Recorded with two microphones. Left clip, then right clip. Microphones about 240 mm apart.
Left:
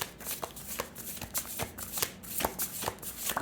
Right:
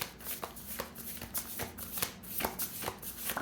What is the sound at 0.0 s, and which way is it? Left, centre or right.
Shuffling cards, left.